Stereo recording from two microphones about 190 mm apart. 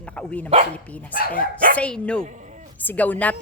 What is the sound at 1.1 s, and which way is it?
Speech, 50° left (ahead or behind).